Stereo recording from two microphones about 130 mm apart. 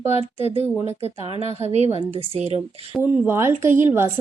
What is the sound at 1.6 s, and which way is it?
A woman's voice, 60° right (ahead or behind).